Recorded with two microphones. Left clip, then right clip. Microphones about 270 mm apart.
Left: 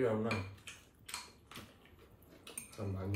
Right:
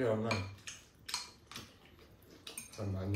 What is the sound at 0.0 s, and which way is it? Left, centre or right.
Cutlery, centre.